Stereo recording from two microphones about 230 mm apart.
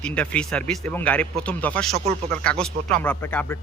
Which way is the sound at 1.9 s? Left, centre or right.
Right.